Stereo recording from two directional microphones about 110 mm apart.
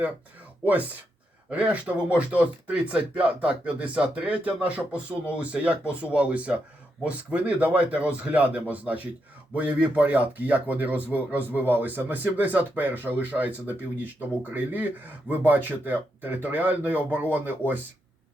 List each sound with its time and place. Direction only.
0.6 s speech: 15° right (ahead or behind)